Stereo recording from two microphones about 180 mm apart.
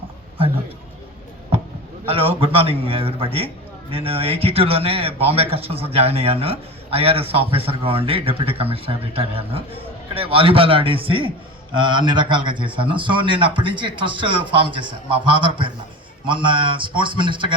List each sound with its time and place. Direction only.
2.0 s a man's voice: 30° right (ahead or behind)